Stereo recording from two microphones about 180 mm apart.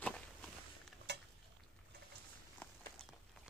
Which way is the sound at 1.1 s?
70° right (ahead or behind).